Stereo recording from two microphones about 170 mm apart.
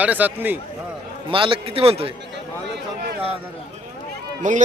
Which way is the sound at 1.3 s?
30° right (ahead or behind).